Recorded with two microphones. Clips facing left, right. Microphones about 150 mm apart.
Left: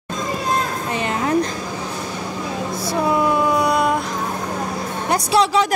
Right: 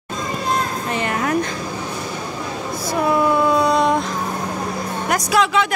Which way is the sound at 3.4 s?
15° left (ahead or behind).